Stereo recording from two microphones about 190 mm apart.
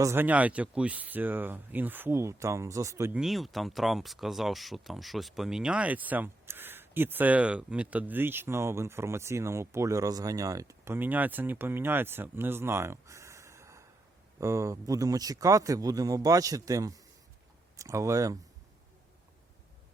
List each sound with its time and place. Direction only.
0.0 s speech: 10° right (ahead or behind)
3.2 s speech: centre (ahead or behind); by 18.3 s 15° right (ahead or behind)